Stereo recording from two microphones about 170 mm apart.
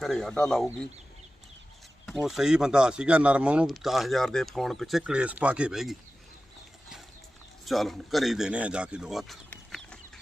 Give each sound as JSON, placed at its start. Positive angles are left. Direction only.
{"t": 0.0, "sound": "speech", "side_deg": 0}
{"t": 2.0, "sound": "speech", "side_deg": 0}
{"t": 7.6, "sound": "a man's voice", "side_deg": 0}